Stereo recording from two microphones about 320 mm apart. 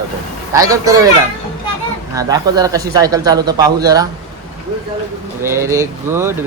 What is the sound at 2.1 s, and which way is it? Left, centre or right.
Speech, centre.